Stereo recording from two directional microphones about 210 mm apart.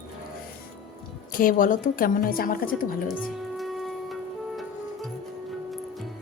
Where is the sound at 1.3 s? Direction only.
40° left (ahead or behind).